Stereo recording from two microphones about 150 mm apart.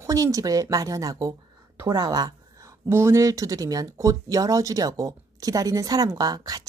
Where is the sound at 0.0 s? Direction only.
25° right (ahead or behind).